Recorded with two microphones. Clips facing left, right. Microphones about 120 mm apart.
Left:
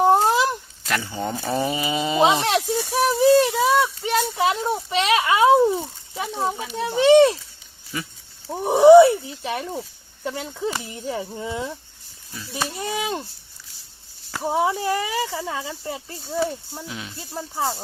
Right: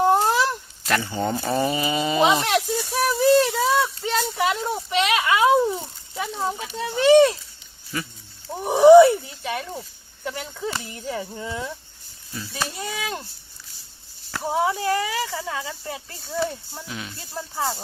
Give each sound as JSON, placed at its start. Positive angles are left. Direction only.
{"t": 0.0, "sound": "a sound", "side_deg": 20}
{"t": 0.9, "sound": "speech", "side_deg": 0}
{"t": 1.6, "sound": "speech", "side_deg": 15}
{"t": 3.1, "sound": "a sound", "side_deg": 20}
{"t": 4.6, "sound": "a sound", "side_deg": 30}
{"t": 6.1, "sound": "speech", "side_deg": 15}
{"t": 8.4, "sound": "speech", "side_deg": 20}
{"t": 14.3, "sound": "speech", "side_deg": 10}
{"t": 16.3, "sound": "speech", "side_deg": 10}